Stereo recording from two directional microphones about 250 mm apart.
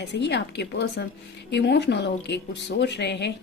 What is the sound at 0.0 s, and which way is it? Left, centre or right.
Speech, left.